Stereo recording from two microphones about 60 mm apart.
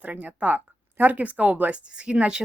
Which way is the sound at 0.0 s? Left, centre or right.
Right.